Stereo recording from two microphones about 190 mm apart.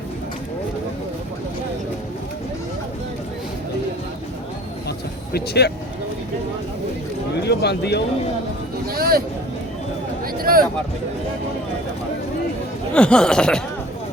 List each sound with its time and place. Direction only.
4.9 s vehicle: 60° left (ahead or behind)
7.4 s speech: 60° left (ahead or behind)
8.9 s speech: 50° right (ahead or behind)
10.3 s a sound: 50° right (ahead or behind)
12.9 s speech: 5° left (ahead or behind)